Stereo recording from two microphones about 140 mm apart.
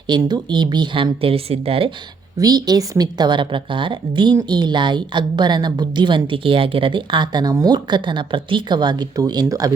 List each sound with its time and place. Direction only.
0.1 s a woman's voice: 30° right (ahead or behind)
2.4 s a woman's voice: 30° right (ahead or behind)